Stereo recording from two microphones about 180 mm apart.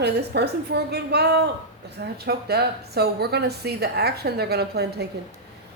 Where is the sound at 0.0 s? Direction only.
65° right (ahead or behind).